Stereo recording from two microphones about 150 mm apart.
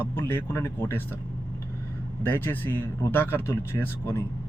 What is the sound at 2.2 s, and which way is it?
Speech, 15° left (ahead or behind).